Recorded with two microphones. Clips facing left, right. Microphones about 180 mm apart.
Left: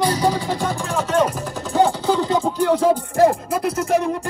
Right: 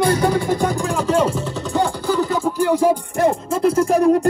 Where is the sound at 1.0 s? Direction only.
30° right (ahead or behind).